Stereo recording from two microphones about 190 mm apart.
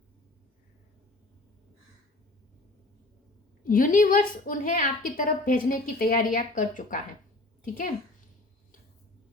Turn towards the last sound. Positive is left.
turn(degrees=45)  # may be behind; listen again after turning